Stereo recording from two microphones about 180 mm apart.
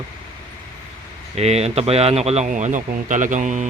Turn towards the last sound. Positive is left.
turn(degrees=-45)  # may be behind; listen again after turning